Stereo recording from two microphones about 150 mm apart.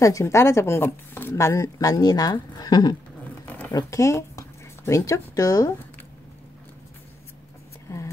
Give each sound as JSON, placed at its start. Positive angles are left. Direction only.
{"t": 0.0, "sound": "speech", "side_deg": 20}
{"t": 3.4, "sound": "zipper", "side_deg": 10}
{"t": 3.7, "sound": "speech", "side_deg": 20}